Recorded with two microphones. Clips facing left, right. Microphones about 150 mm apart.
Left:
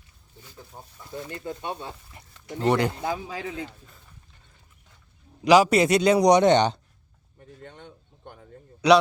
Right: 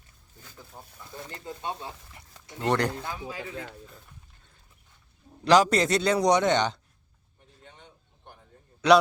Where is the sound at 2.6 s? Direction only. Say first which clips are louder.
Left 3 dB; 10° left (ahead or behind).